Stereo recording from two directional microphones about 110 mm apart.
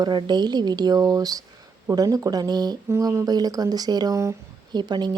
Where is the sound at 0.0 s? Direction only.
40° right (ahead or behind).